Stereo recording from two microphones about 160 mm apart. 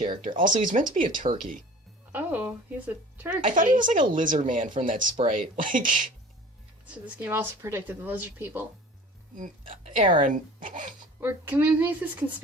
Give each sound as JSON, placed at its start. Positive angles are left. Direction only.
{"t": 0.3, "sound": "speech", "side_deg": -55}
{"t": 2.1, "sound": "speech", "side_deg": -10}
{"t": 3.4, "sound": "speech", "side_deg": -55}
{"t": 6.8, "sound": "speech", "side_deg": -10}
{"t": 9.3, "sound": "speech", "side_deg": -50}
{"t": 11.2, "sound": "speech", "side_deg": -15}